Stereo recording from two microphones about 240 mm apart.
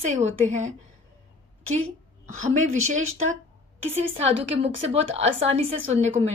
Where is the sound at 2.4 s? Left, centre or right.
Right.